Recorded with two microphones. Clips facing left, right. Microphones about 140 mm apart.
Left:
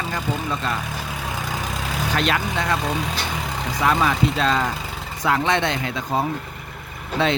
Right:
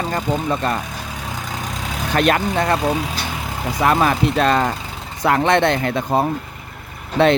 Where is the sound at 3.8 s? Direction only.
50° right (ahead or behind).